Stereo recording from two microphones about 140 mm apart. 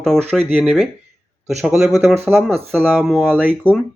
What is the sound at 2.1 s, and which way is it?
Speech, 15° right (ahead or behind).